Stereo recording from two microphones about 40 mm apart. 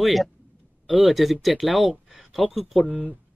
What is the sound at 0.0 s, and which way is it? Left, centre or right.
Speech, centre.